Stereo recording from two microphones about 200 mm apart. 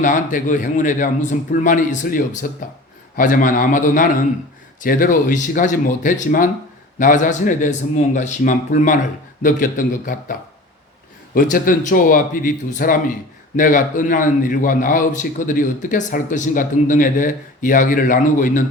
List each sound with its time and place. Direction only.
0.0 s a man's voice: 40° left (ahead or behind)
11.3 s a man's voice: 45° left (ahead or behind)